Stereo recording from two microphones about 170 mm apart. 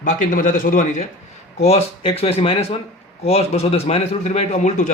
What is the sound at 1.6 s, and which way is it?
A man's voice, 35° left (ahead or behind).